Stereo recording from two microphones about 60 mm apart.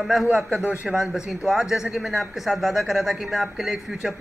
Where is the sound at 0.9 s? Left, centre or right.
Centre.